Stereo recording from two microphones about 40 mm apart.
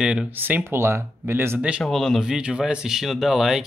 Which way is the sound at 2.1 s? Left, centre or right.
Centre.